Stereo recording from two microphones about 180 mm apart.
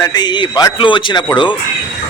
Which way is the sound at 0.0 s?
25° left (ahead or behind).